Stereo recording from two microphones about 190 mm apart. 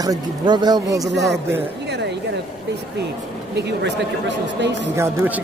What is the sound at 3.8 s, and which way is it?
Speech, 65° right (ahead or behind).